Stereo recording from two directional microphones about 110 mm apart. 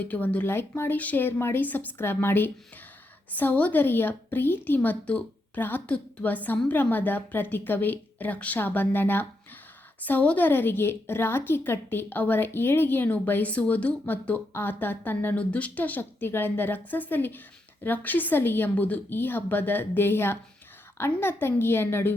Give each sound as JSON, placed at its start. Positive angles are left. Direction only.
{"t": 0.0, "sound": "a woman's voice", "side_deg": 15}